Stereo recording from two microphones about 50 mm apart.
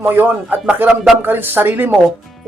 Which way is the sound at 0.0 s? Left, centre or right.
Right.